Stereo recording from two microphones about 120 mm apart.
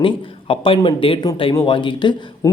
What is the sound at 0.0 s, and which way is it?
Speech, 50° left (ahead or behind).